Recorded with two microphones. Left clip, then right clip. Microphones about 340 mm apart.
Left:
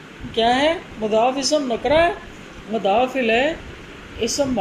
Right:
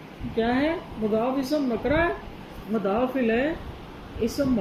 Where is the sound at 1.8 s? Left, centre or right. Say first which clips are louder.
Left 8 dB; left.